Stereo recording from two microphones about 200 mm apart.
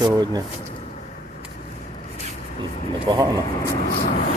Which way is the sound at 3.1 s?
25° right (ahead or behind).